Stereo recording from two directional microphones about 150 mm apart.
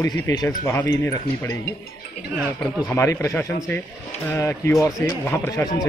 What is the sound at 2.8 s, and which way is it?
A man's voice, 20° left (ahead or behind).